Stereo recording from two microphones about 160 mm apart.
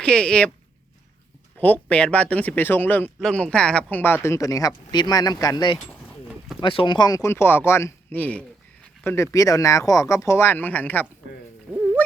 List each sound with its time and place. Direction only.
0.0 s speech: 5° left (ahead or behind)
1.5 s speech: 10° left (ahead or behind)
9.1 s speech: 20° left (ahead or behind)
11.7 s dog: 10° right (ahead or behind)